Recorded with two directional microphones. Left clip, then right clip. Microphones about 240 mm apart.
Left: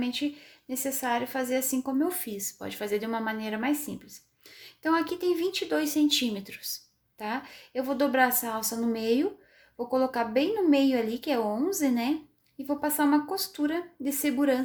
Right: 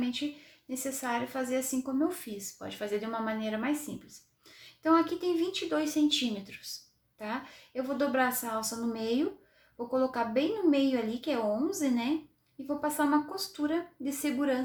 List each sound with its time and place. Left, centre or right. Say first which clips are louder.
0.0 s a woman's voice: left 3 dB; left